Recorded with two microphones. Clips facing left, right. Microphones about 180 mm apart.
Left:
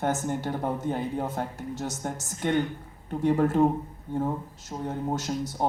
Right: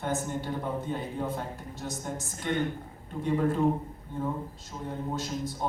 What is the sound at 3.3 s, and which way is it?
Speech, 45° left (ahead or behind).